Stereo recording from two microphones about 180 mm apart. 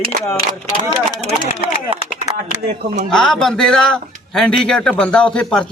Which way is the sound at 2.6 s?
60° right (ahead or behind).